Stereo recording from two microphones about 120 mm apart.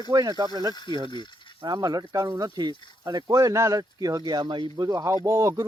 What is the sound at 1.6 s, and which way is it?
Speech, 35° right (ahead or behind).